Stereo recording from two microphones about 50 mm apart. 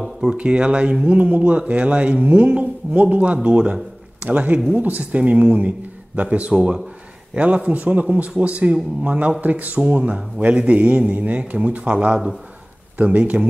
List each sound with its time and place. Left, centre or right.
0.2 s speech: centre